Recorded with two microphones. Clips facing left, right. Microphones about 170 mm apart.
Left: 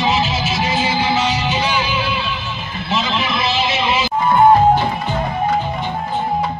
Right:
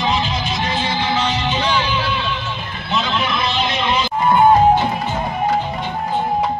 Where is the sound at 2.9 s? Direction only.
Centre (ahead or behind).